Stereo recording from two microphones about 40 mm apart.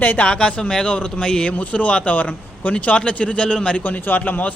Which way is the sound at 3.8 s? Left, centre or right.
Left.